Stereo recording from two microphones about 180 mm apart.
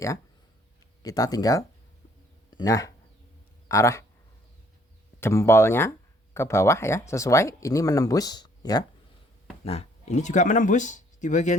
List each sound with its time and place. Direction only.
1.0 s speech: 20° left (ahead or behind)
5.2 s speech: 15° left (ahead or behind)
9.6 s speech: 35° left (ahead or behind)